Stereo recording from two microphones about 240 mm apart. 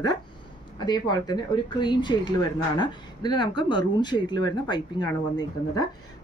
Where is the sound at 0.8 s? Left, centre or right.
Centre.